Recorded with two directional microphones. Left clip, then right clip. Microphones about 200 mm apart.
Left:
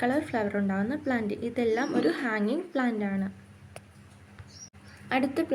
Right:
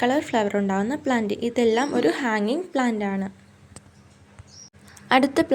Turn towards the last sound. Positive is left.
turn(degrees=-50)  # may be behind; listen again after turning